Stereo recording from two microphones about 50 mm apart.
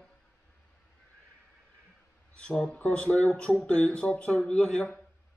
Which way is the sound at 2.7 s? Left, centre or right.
Left.